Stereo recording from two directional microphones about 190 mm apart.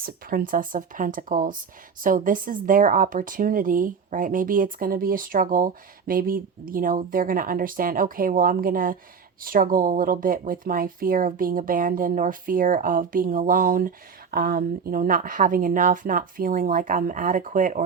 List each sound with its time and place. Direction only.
0.0 s speech: 50° right (ahead or behind)